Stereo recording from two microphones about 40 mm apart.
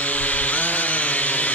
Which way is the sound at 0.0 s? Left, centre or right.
Left.